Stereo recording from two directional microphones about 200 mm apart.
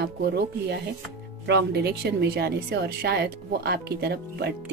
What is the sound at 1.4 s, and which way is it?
A woman's voice, 55° right (ahead or behind).